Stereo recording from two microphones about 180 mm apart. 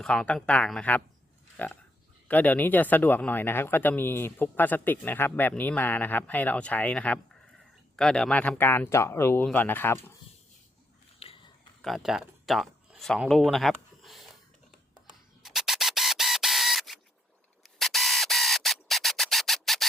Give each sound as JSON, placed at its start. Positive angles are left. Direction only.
{"t": 0.0, "sound": "speech", "side_deg": 5}
{"t": 11.2, "sound": "biting", "side_deg": 30}
{"t": 11.8, "sound": "speech", "side_deg": 0}
{"t": 15.4, "sound": "camera", "side_deg": 0}
{"t": 17.6, "sound": "a sound", "side_deg": 0}